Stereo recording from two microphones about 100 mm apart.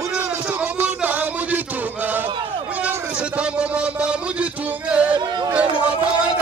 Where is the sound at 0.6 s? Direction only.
15° right (ahead or behind).